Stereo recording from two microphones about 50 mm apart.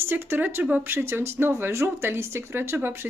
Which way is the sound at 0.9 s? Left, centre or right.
Right.